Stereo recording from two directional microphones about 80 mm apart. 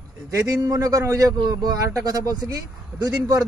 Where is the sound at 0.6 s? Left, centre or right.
Right.